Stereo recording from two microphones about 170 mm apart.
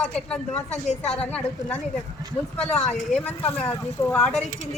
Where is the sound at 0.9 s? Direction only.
40° left (ahead or behind).